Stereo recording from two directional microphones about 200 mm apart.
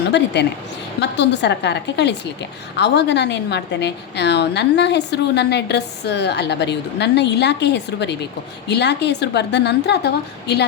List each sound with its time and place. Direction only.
1.1 s a woman's voice: 60° left (ahead or behind)